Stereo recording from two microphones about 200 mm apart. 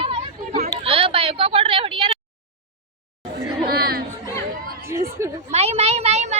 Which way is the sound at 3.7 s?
50° right (ahead or behind).